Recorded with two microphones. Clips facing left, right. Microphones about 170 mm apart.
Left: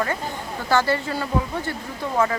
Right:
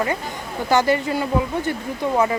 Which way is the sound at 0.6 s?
15° right (ahead or behind).